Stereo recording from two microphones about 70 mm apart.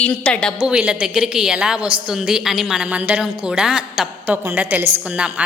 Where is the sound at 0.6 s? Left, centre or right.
Centre.